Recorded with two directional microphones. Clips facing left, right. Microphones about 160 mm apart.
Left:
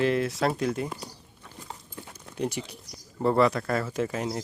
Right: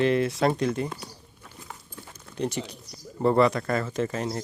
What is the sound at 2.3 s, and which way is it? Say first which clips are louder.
Speech: right 1 dB; 10° left (ahead or behind).